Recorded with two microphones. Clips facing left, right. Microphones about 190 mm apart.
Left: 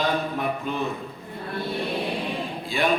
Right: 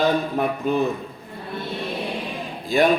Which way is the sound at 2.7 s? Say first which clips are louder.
Right 7 dB; 40° right (ahead or behind).